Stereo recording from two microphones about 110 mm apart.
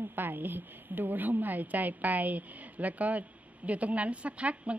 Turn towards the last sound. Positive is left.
turn(degrees=-10)  # may be behind; listen again after turning